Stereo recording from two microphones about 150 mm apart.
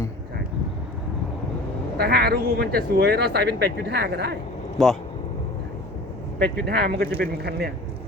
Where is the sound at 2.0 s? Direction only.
90° right.